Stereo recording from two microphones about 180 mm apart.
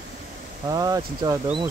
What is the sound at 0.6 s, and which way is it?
Speech, 20° right (ahead or behind).